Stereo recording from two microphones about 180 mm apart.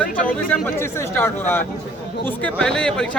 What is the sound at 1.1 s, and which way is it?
Speech, 10° left (ahead or behind).